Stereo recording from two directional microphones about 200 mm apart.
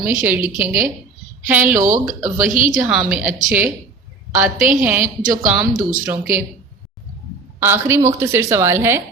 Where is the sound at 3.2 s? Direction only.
40° right (ahead or behind).